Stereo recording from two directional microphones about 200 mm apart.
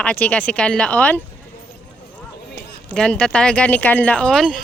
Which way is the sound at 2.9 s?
5° left (ahead or behind).